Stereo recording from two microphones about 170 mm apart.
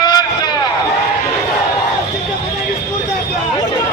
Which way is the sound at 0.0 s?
25° left (ahead or behind).